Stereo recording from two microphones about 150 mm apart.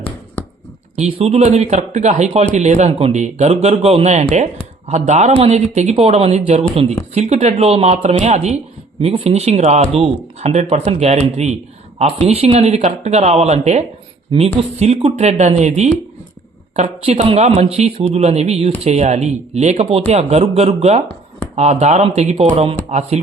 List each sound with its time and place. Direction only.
0.9 s speech: 45° right (ahead or behind)